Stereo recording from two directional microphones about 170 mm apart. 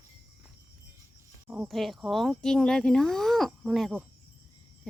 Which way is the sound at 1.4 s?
10° right (ahead or behind).